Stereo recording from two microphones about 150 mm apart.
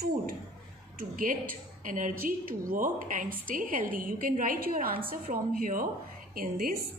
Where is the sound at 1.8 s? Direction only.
60° right (ahead or behind).